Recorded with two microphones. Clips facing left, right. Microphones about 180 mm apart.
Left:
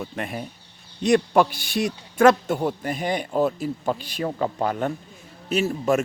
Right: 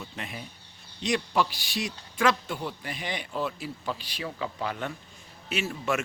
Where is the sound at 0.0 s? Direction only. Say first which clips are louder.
Left 9 dB; 50° left (ahead or behind).